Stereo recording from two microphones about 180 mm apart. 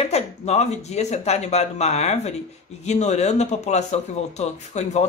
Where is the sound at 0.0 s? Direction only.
35° left (ahead or behind).